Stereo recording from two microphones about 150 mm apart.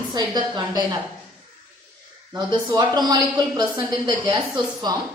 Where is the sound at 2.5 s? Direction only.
30° right (ahead or behind).